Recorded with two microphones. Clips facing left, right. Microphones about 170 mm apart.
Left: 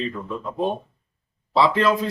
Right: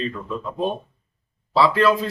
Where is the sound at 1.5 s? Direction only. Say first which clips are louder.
Right 1 dB; 20° left (ahead or behind).